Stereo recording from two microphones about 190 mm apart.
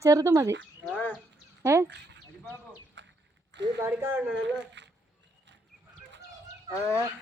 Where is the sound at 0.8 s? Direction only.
5° left (ahead or behind).